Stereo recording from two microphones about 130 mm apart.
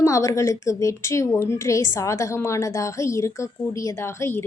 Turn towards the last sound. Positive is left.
turn(degrees=20)  # may be behind; listen again after turning